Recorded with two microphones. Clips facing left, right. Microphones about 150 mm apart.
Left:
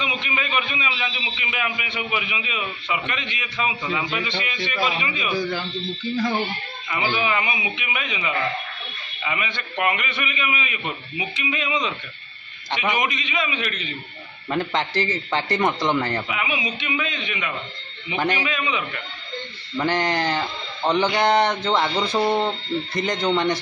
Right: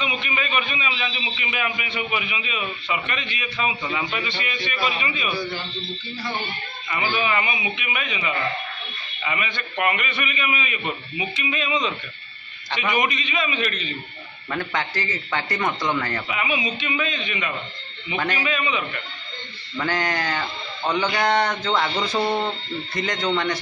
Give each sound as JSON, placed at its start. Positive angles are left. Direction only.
{"t": 0.0, "sound": "a man's voice", "side_deg": 20}
{"t": 6.9, "sound": "a man's voice", "side_deg": 15}
{"t": 14.5, "sound": "speech", "side_deg": 25}
{"t": 16.3, "sound": "a man's voice", "side_deg": 10}